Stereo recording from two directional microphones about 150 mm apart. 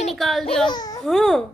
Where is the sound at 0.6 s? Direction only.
25° left (ahead or behind).